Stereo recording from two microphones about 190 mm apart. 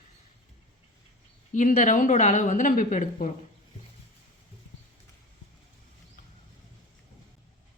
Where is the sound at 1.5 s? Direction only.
40° left (ahead or behind).